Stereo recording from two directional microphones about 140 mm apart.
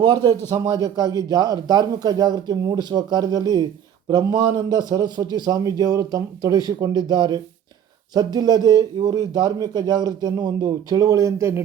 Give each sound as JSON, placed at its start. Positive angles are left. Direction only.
{"t": 0.0, "sound": "a man's voice", "side_deg": -30}